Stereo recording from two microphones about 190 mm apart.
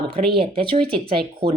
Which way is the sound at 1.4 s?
55° right (ahead or behind).